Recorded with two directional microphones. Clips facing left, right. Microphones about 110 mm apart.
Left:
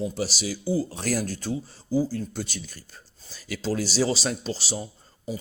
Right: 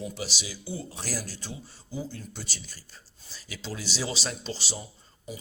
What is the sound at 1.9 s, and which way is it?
Speech, 35° left (ahead or behind).